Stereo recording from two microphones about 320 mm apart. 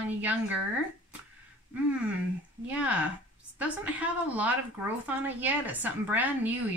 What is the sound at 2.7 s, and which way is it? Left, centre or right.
Speech, centre.